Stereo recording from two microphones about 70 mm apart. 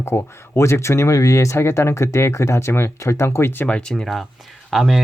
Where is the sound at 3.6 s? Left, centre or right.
Centre.